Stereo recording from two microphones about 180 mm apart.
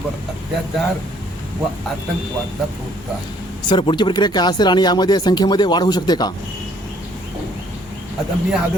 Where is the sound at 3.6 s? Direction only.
25° left (ahead or behind).